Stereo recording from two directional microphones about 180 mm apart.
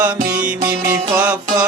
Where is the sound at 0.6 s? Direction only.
50° right (ahead or behind).